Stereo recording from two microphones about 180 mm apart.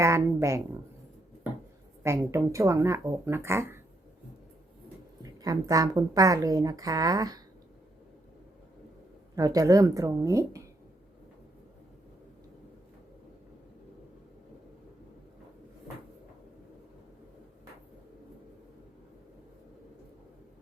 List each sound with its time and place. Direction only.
0.0 s speech: 15° right (ahead or behind)
2.0 s speech: 15° right (ahead or behind)
5.2 s a woman's voice: 20° right (ahead or behind)
9.3 s a woman's voice: 20° right (ahead or behind)